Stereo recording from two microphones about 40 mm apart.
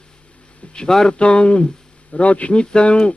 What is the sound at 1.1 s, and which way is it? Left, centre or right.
Speech, left.